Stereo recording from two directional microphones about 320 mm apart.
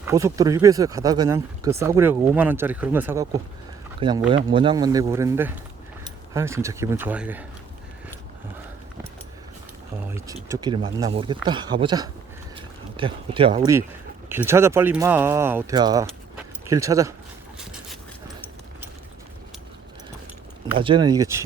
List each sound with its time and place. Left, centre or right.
0.0 s speech: centre
10.1 s speech: centre
17.6 s a sound: centre
20.7 s speech: centre